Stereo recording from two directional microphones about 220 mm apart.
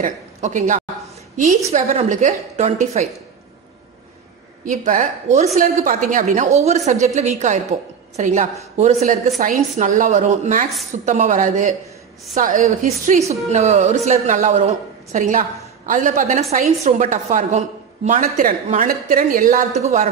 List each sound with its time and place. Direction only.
0.0 s a woman's voice: 35° right (ahead or behind)
4.6 s a woman's voice: 35° right (ahead or behind)